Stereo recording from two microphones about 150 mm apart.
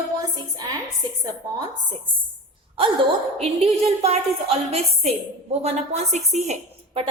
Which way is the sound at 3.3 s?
40° right (ahead or behind).